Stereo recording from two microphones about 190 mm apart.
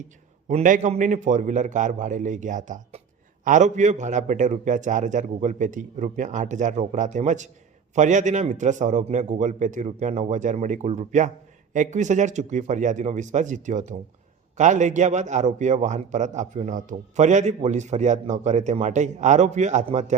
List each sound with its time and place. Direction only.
0.4 s a man's voice: 40° right (ahead or behind)